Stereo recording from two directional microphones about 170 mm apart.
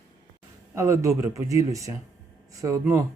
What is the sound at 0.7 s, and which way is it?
Speech, 15° right (ahead or behind).